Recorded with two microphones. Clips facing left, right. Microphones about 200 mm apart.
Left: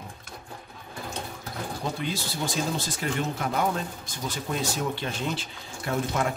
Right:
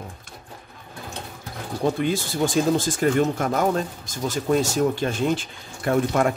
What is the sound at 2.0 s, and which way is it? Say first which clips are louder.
Speech: right 8 dB; 50° right (ahead or behind).